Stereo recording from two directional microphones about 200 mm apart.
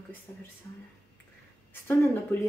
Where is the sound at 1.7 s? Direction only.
15° left (ahead or behind).